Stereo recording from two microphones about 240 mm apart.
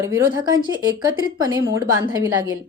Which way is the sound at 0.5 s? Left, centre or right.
Centre.